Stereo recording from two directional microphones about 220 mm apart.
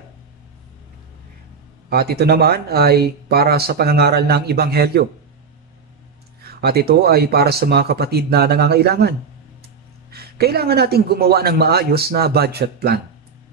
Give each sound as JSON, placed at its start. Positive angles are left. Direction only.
{"t": 1.9, "sound": "speech", "side_deg": -45}
{"t": 6.4, "sound": "speech", "side_deg": -45}
{"t": 10.1, "sound": "speech", "side_deg": -45}